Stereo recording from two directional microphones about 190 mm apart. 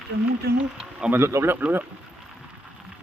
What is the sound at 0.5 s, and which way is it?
Speech, 5° right (ahead or behind).